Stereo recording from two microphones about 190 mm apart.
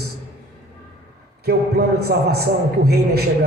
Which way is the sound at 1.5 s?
55° right (ahead or behind).